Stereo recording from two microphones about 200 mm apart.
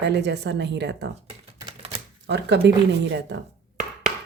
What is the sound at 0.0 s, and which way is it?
Speech, 60° right (ahead or behind).